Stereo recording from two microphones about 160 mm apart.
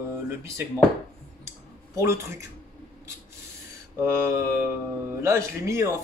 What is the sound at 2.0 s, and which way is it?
Speech, 15° right (ahead or behind).